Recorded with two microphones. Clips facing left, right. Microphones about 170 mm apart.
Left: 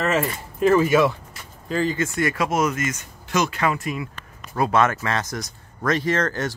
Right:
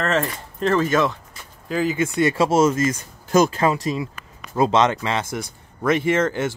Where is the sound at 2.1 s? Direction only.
25° right (ahead or behind).